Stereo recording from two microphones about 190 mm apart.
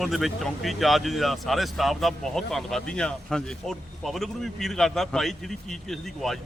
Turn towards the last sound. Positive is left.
turn(degrees=0)  # may be behind; listen again after turning